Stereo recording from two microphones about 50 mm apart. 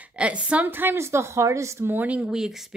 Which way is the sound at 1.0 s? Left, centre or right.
Right.